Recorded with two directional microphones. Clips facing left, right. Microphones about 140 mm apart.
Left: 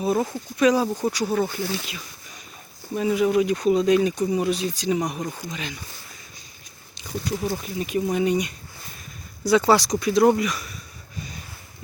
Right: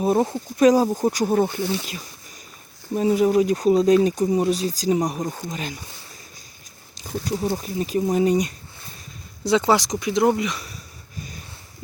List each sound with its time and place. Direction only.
0.0 s speech: 30° right (ahead or behind)
0.5 s speech: 40° right (ahead or behind)
1.5 s speech: 20° right (ahead or behind)
1.9 s a sound: 40° right (ahead or behind)
2.9 s speech: 35° right (ahead or behind)
7.3 s speech: 30° right (ahead or behind)
9.4 s speech: 20° right (ahead or behind)